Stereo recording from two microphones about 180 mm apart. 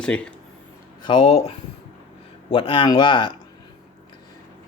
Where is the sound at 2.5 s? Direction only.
30° left (ahead or behind).